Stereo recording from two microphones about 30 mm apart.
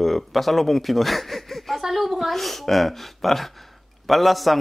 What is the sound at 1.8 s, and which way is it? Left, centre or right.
A woman's voice, centre.